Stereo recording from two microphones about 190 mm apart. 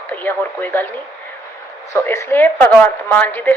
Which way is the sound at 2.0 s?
15° left (ahead or behind).